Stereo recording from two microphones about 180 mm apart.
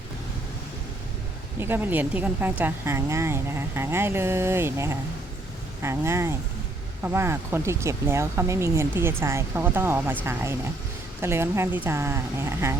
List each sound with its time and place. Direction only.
1.5 s speech: 10° right (ahead or behind)
11.2 s speech: 15° right (ahead or behind)